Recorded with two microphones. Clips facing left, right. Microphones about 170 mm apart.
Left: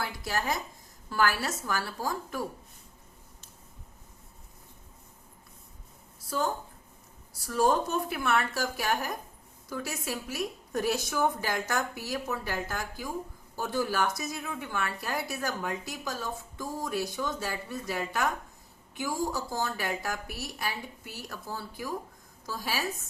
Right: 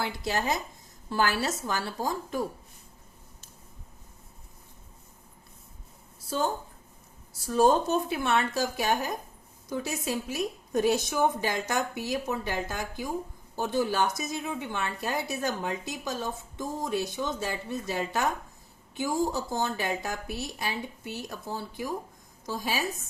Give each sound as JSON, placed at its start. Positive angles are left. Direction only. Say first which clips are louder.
{"t": 0.0, "sound": "a woman's voice", "louder": "right 3 dB", "side_deg": -20}
{"t": 6.3, "sound": "a woman's voice", "louder": "right 2 dB", "side_deg": -30}